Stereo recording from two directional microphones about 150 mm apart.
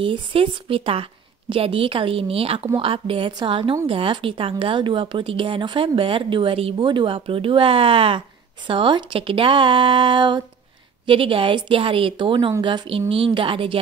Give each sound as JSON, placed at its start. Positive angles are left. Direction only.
{"t": 0.0, "sound": "speech", "side_deg": -35}